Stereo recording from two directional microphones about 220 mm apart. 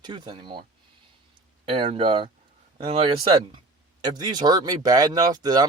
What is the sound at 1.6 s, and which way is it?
Speech, 25° right (ahead or behind).